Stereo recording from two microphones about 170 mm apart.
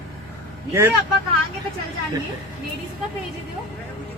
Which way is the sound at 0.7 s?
15° right (ahead or behind).